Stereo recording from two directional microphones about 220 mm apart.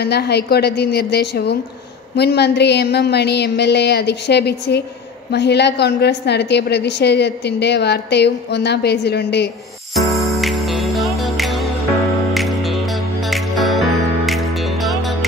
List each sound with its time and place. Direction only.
0.0 s a woman's voice: 50° left (ahead or behind)
10.3 s music: centre (ahead or behind)